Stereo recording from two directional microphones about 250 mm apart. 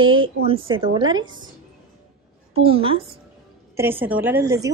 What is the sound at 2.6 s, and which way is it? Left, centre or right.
Speech, right.